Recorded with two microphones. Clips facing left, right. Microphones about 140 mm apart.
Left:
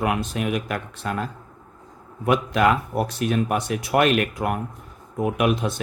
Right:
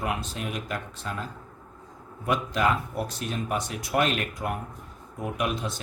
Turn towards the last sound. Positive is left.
turn(degrees=65)  # may be behind; listen again after turning